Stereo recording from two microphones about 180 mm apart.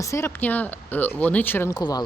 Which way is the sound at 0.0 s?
15° left (ahead or behind).